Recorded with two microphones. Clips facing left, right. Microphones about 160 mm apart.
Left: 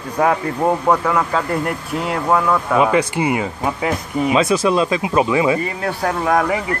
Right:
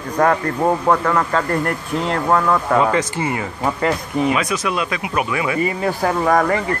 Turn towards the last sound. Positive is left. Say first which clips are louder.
# right 1 dB
turn(degrees=5)  # may be behind; listen again after turning